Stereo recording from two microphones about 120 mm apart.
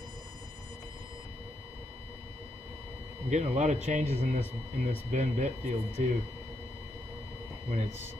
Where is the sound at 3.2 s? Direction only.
85° right.